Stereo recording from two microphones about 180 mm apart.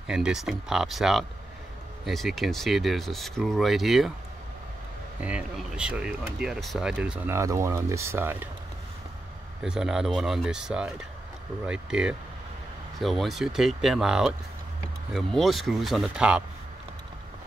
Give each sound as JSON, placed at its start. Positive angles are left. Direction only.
{"t": 0.0, "sound": "speech", "side_deg": -5}
{"t": 5.2, "sound": "speech", "side_deg": -5}
{"t": 7.3, "sound": "speech", "side_deg": -15}
{"t": 9.6, "sound": "speech", "side_deg": 0}